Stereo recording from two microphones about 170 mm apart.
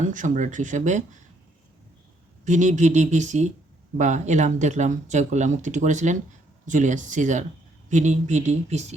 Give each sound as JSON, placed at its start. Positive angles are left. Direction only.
{"t": 0.0, "sound": "speech", "side_deg": -50}
{"t": 2.4, "sound": "speech", "side_deg": -45}